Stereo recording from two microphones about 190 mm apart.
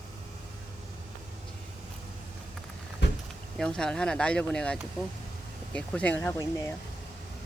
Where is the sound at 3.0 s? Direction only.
65° left (ahead or behind).